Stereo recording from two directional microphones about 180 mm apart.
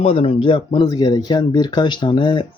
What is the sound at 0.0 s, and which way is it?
Speech, 35° left (ahead or behind).